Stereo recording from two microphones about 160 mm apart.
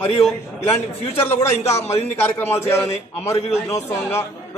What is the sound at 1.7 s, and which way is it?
Speech, 15° left (ahead or behind).